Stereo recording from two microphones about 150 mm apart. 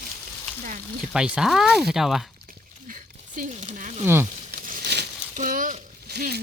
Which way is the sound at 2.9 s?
60° right (ahead or behind).